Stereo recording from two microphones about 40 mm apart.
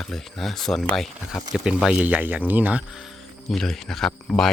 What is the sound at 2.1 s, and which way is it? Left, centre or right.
Speech, right.